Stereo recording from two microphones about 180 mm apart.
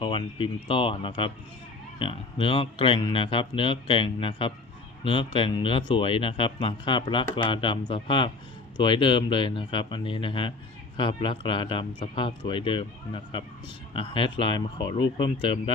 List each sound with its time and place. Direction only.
0.0 s speech: 30° left (ahead or behind)